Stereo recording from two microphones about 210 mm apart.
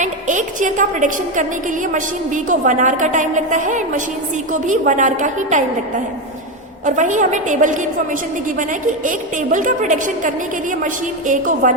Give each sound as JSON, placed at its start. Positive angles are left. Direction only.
{"t": 0.0, "sound": "a woman's voice", "side_deg": -35}
{"t": 6.8, "sound": "a woman's voice", "side_deg": -35}
{"t": 9.0, "sound": "a woman's voice", "side_deg": -40}